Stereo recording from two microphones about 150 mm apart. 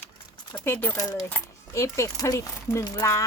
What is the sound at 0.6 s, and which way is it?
Speech, 15° left (ahead or behind).